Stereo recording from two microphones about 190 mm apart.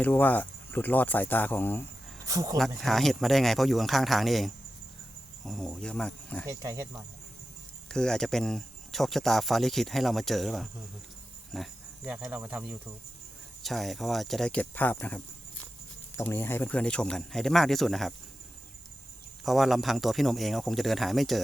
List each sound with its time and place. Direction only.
0.0 s speech: 10° left (ahead or behind)
2.2 s speech: 20° right (ahead or behind)
2.6 s speech: centre (ahead or behind)
6.5 s speech: 15° right (ahead or behind)
7.9 s speech: 5° left (ahead or behind)
11.5 s cricket: 5° right (ahead or behind)
13.6 s speech: centre (ahead or behind)
19.5 s speech: centre (ahead or behind)